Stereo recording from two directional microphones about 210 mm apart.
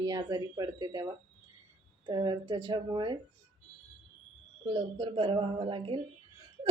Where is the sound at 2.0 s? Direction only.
20° right (ahead or behind).